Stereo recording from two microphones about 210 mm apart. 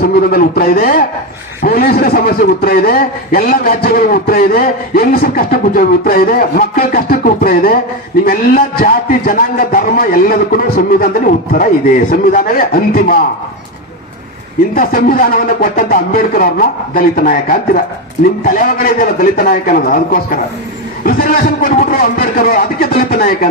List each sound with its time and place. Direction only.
0.0 s a man's voice: 45° left (ahead or behind)
12.1 s a man's voice: 45° left (ahead or behind)
14.8 s a man's voice: 45° left (ahead or behind)